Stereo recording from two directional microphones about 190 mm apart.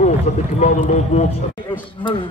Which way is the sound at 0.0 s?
35° left (ahead or behind).